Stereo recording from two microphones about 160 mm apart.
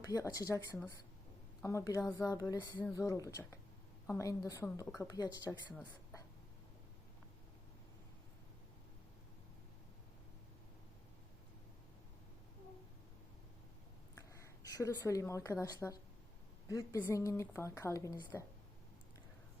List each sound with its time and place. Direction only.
0.0 s a woman's voice: 20° left (ahead or behind)
2.2 s a sound: 5° left (ahead or behind)
2.8 s a woman's voice: 20° left (ahead or behind)
14.2 s a woman's voice: 20° left (ahead or behind)